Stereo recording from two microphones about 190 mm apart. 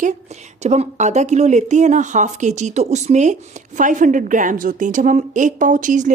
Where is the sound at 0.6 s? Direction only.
35° right (ahead or behind).